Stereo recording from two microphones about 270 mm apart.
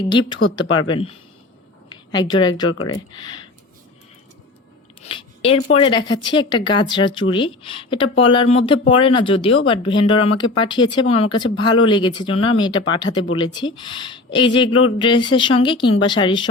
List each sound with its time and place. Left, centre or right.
0.1 s a woman's voice: centre
2.6 s speech: left
2.9 s speech: centre
5.0 s a sound: centre
5.8 s a woman's voice: centre